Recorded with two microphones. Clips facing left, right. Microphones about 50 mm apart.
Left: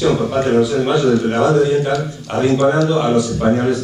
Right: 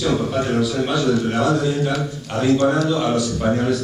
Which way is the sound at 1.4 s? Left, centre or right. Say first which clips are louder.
Left 5 dB; left.